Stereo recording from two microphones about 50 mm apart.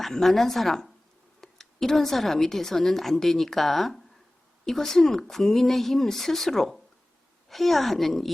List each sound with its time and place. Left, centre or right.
0.0 s a woman's voice: centre